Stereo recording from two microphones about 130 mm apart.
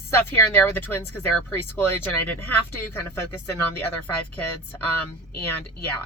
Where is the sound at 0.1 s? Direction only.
15° left (ahead or behind).